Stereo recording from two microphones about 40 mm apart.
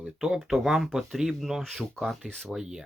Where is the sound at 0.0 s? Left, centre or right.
Centre.